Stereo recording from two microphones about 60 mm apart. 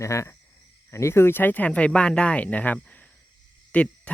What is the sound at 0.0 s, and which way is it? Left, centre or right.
Speech, left.